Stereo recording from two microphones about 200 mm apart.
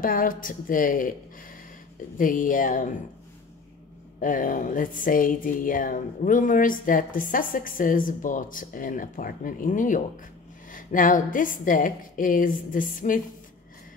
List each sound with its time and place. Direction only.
0.0 s speech: 45° left (ahead or behind)
2.1 s a woman's voice: 40° left (ahead or behind)
4.2 s a woman's voice: 40° left (ahead or behind)